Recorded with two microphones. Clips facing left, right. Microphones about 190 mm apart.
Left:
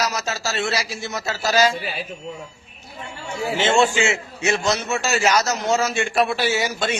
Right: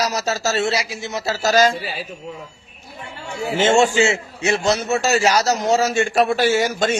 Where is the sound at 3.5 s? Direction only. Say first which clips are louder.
Right 3 dB; 45° right (ahead or behind).